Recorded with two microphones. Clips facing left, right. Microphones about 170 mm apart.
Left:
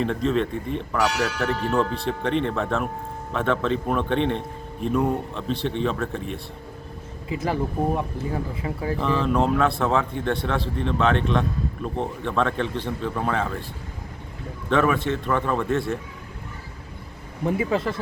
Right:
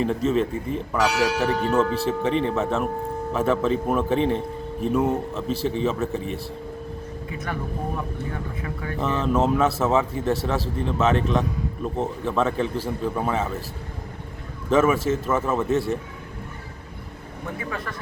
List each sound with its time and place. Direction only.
0.0 s a man's voice: 5° right (ahead or behind)
7.3 s speech: 30° left (ahead or behind)
9.0 s a man's voice: centre (ahead or behind)
14.7 s a man's voice: 5° right (ahead or behind)
17.7 s speech: 25° left (ahead or behind)